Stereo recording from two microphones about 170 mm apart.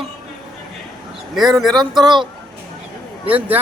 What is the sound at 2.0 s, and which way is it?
Speech, 25° right (ahead or behind).